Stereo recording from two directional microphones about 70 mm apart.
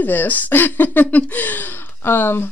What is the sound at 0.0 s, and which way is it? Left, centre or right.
Speech, left.